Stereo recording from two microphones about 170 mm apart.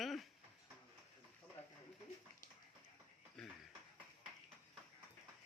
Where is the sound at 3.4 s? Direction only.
Centre (ahead or behind).